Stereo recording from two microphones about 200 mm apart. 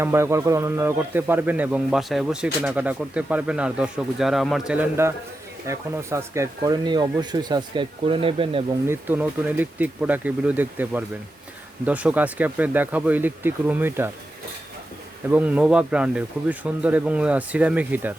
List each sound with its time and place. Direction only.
0.0 s a man's voice: 15° right (ahead or behind)
8.9 s a man's voice: 10° right (ahead or behind)
15.3 s a man's voice: 5° right (ahead or behind)